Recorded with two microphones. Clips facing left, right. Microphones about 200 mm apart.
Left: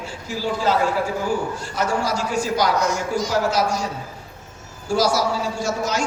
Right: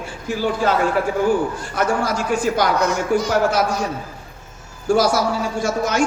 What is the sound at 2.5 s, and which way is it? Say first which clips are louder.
A man's voice: right 2 dB; 60° right (ahead or behind).